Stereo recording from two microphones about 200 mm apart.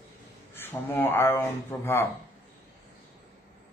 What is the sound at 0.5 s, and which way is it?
A man's voice, 10° left (ahead or behind).